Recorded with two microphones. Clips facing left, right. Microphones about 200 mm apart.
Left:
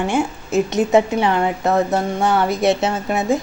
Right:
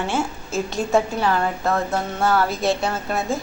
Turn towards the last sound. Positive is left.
turn(degrees=15)  # may be behind; listen again after turning